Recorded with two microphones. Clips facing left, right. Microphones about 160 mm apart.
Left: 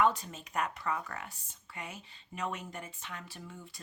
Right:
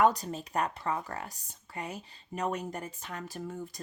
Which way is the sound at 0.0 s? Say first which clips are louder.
Right 4 dB; 40° right (ahead or behind).